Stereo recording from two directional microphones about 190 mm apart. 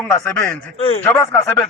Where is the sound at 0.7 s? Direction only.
30° left (ahead or behind).